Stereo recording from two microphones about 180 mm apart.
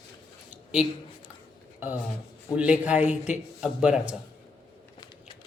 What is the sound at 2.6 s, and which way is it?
A man's voice, 5° right (ahead or behind).